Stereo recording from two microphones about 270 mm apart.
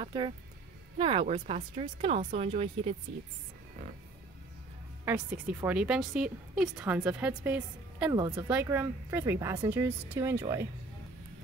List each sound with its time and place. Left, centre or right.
0.0 s a woman's voice: centre
5.0 s a woman's voice: centre